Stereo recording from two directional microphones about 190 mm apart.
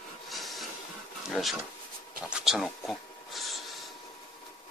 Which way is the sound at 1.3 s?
Centre (ahead or behind).